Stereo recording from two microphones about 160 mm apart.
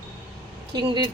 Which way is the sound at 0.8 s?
25° right (ahead or behind).